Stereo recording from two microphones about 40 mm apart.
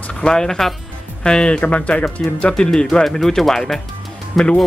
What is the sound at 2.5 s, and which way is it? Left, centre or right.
Speech, centre.